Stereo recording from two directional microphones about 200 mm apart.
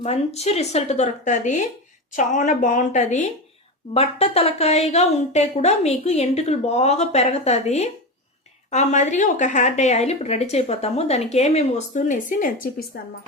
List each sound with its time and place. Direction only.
0.0 s speech: 30° left (ahead or behind)
12.9 s a woman's voice: 55° left (ahead or behind)